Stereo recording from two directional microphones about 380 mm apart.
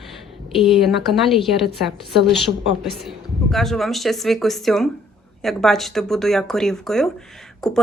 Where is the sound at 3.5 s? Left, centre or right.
Centre.